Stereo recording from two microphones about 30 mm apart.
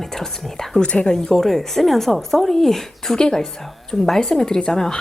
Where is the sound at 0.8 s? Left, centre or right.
Left.